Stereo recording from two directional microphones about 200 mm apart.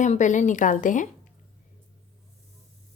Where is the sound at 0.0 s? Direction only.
40° left (ahead or behind).